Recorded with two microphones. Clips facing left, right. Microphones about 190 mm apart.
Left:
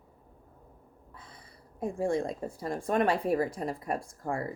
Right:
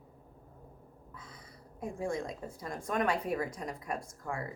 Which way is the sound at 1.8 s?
30° left (ahead or behind).